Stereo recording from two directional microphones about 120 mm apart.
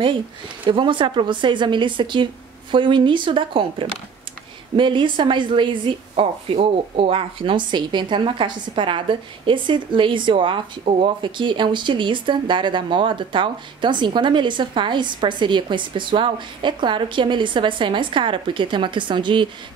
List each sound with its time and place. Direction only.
0.7 s a woman's voice: 45° right (ahead or behind)